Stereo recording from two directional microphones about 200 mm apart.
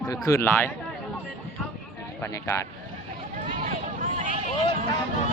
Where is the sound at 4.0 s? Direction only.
35° right (ahead or behind).